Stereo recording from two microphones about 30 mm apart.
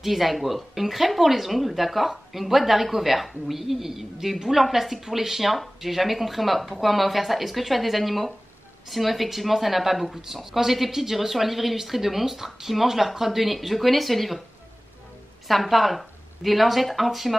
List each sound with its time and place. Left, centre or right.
0.0 s speech: centre
15.4 s speech: centre